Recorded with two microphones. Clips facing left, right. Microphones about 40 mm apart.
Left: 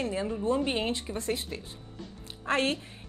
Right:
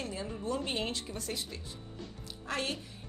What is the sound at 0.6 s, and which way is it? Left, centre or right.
A woman's voice, left.